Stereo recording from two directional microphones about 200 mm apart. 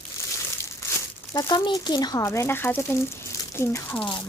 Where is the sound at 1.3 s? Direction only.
20° left (ahead or behind).